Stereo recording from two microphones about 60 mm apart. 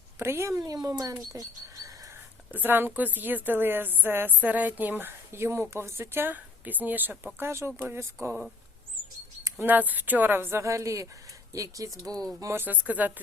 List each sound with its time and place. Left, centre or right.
0.2 s speech: right
0.7 s speech: right
1.3 s speech: right
2.5 s a woman's voice: right
6.3 s a woman's voice: right
7.3 s speech: right
9.6 s a woman's voice: right
10.6 s a woman's voice: right
12.0 s speech: right
12.5 s speech: right